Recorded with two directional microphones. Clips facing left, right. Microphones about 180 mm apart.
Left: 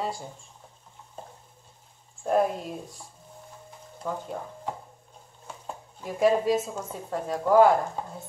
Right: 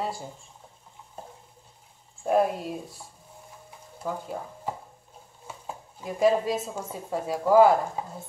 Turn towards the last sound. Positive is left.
turn(degrees=-5)  # may be behind; listen again after turning